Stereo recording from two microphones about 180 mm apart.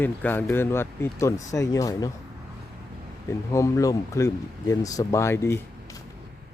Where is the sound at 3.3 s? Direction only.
15° left (ahead or behind).